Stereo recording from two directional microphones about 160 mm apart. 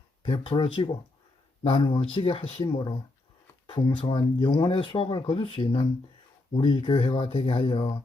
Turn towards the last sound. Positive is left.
turn(degrees=35)  # may be behind; listen again after turning